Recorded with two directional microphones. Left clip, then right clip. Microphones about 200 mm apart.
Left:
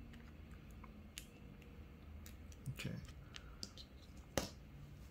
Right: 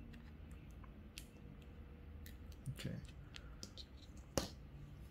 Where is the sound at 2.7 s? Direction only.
Centre (ahead or behind).